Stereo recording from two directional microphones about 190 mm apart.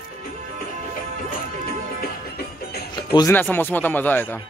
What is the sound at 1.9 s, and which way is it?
Music, 55° left (ahead or behind).